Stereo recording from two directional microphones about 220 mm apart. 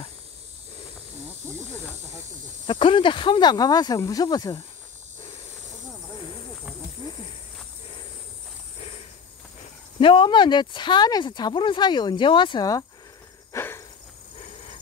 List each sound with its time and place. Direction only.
2.6 s speech: 25° left (ahead or behind)
9.9 s speech: 25° left (ahead or behind)
13.5 s insect: 10° left (ahead or behind)